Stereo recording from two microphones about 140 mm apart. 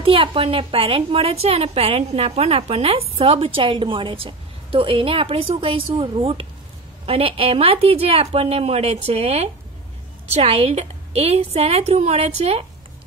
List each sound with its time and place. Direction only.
0.0 s a woman's voice: 40° right (ahead or behind)